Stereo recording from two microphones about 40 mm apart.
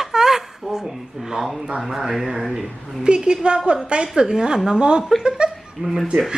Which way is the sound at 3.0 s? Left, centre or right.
Right.